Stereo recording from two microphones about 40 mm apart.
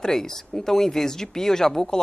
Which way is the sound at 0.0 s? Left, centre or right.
Centre.